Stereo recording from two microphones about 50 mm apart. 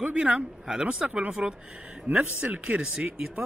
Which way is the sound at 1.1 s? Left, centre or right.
Right.